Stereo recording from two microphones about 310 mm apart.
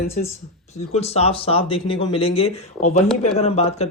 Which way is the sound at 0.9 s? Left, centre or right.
Centre.